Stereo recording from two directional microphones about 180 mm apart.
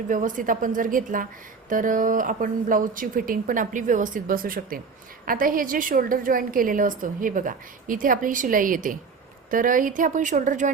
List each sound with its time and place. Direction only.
0.1 s a woman's voice: 45° right (ahead or behind)